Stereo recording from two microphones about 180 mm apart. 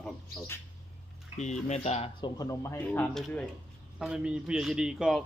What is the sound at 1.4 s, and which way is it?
Speech, 40° left (ahead or behind).